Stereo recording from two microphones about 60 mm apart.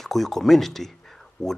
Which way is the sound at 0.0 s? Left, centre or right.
Centre.